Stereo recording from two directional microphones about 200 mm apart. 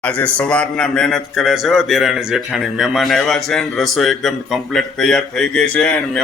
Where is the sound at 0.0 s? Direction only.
5° left (ahead or behind).